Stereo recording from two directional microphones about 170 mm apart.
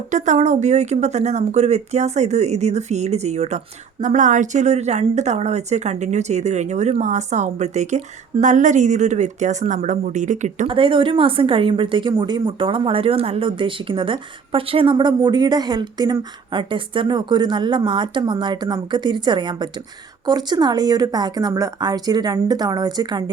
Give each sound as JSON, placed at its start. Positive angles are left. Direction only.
{"t": 0.1, "sound": "a woman's voice", "side_deg": -45}
{"t": 10.7, "sound": "a woman's voice", "side_deg": -30}